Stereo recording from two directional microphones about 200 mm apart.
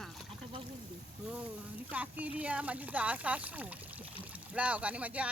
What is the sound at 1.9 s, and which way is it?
Speech, 10° right (ahead or behind).